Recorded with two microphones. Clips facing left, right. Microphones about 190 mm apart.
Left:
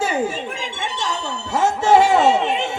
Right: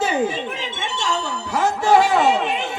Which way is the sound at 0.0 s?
10° left (ahead or behind).